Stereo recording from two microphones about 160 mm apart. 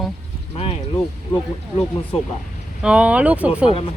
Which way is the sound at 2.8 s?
5° right (ahead or behind).